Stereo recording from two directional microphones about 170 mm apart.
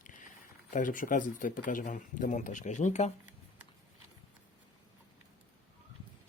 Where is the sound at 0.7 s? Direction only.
50° left (ahead or behind).